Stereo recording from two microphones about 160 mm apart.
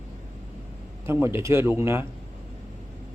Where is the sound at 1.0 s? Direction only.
15° right (ahead or behind).